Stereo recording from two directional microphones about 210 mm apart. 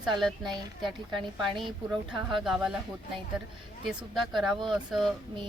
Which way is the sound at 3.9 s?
5° right (ahead or behind).